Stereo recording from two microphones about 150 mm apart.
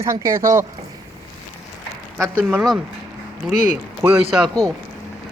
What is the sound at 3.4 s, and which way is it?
Speech, centre (ahead or behind).